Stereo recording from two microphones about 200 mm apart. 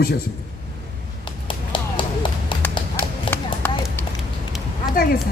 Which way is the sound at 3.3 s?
25° left (ahead or behind).